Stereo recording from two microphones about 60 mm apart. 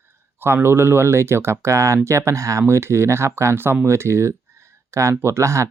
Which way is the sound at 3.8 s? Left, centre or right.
Right.